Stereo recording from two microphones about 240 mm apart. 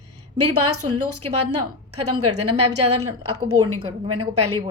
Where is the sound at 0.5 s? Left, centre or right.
Right.